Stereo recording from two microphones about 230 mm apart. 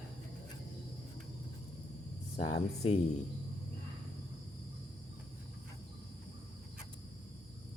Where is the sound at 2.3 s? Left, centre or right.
Left.